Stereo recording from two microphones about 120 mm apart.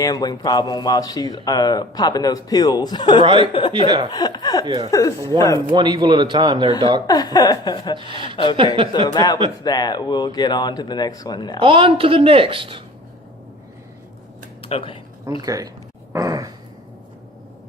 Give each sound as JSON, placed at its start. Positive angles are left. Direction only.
{"t": 0.0, "sound": "speech", "side_deg": 35}
{"t": 3.2, "sound": "a woman's voice", "side_deg": -45}
{"t": 4.1, "sound": "speech", "side_deg": 35}
{"t": 4.6, "sound": "speech", "side_deg": -40}
{"t": 4.9, "sound": "speech", "side_deg": 30}
{"t": 5.3, "sound": "speech", "side_deg": -40}
{"t": 7.1, "sound": "speech", "side_deg": 35}
{"t": 7.9, "sound": "a woman's voice", "side_deg": -45}
{"t": 9.1, "sound": "speech", "side_deg": 35}
{"t": 11.6, "sound": "a woman's voice", "side_deg": -45}
{"t": 14.6, "sound": "a sound", "side_deg": 50}
{"t": 15.4, "sound": "speech", "side_deg": -30}
{"t": 16.1, "sound": "dog", "side_deg": -30}